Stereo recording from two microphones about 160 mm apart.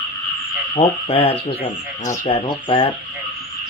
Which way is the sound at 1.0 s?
35° left (ahead or behind).